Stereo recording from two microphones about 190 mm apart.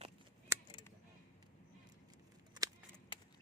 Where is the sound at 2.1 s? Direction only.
20° right (ahead or behind).